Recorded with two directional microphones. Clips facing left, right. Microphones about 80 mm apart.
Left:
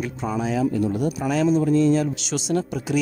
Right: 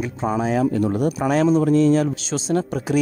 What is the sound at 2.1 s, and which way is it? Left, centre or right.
Speech, right.